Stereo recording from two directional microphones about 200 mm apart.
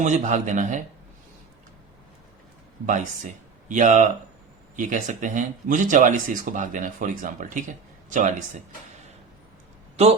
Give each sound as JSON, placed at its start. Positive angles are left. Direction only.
{"t": 0.0, "sound": "speech", "side_deg": -35}
{"t": 2.8, "sound": "speech", "side_deg": -40}